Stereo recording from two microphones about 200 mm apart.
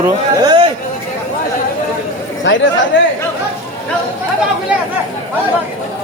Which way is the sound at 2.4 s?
65° left (ahead or behind).